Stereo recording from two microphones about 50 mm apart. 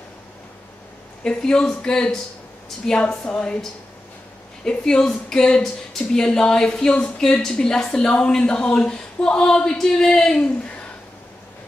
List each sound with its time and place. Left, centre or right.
1.2 s a woman's voice: centre
4.6 s a woman's voice: centre